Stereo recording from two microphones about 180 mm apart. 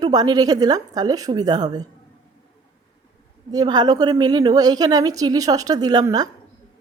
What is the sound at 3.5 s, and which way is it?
A woman's voice, 20° right (ahead or behind).